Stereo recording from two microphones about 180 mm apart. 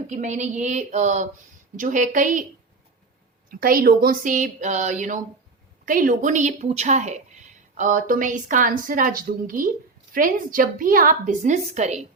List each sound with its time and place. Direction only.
0.1 s a woman's voice: 40° right (ahead or behind)
3.5 s a woman's voice: 55° right (ahead or behind)